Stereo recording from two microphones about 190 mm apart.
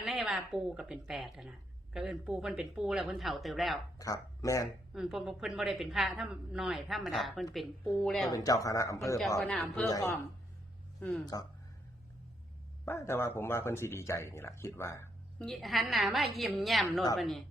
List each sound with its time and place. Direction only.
0.0 s a woman's voice: centre (ahead or behind)
3.9 s speech: 15° left (ahead or behind)
4.9 s a woman's voice: centre (ahead or behind)
8.3 s speech: 20° left (ahead or behind)
9.5 s a woman's voice: 5° left (ahead or behind)
9.8 s speech: 15° left (ahead or behind)
11.0 s a woman's voice: 5° left (ahead or behind)
12.8 s speech: 15° left (ahead or behind)
15.4 s a woman's voice: centre (ahead or behind)